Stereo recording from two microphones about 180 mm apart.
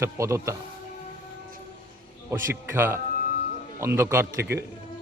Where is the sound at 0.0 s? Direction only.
15° right (ahead or behind).